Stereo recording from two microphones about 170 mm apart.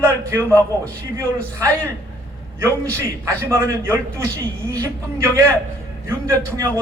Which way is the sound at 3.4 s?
15° right (ahead or behind).